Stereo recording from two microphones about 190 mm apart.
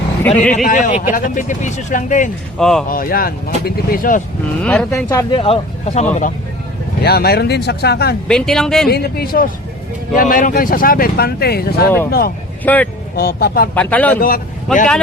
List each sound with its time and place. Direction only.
0.2 s speech: 10° left (ahead or behind)
0.6 s speech: 40° left (ahead or behind)
2.6 s speech: 5° left (ahead or behind)
2.9 s speech: 50° left (ahead or behind)
4.6 s speech: 5° left (ahead or behind)
5.0 s speech: 20° left (ahead or behind)
7.0 s speech: 55° left (ahead or behind)
8.3 s speech: 5° left (ahead or behind)
8.9 s speech: 55° left (ahead or behind)
12.6 s speech: 10° left (ahead or behind)
13.1 s speech: 55° left (ahead or behind)
13.7 s speech: 10° left (ahead or behind)
14.2 s speech: 50° left (ahead or behind)
14.7 s speech: centre (ahead or behind)